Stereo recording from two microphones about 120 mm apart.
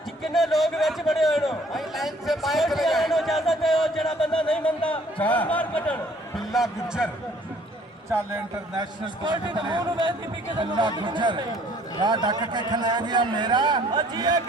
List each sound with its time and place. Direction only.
0.2 s a man's voice: centre (ahead or behind)
6.5 s a man's voice: 5° right (ahead or behind)
8.7 s a man's voice: 35° right (ahead or behind)